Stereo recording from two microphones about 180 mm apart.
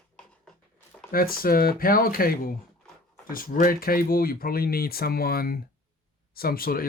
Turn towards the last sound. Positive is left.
turn(degrees=55)  # may be behind; listen again after turning